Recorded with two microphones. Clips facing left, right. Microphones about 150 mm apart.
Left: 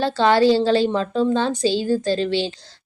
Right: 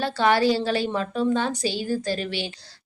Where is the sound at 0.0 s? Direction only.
25° left (ahead or behind).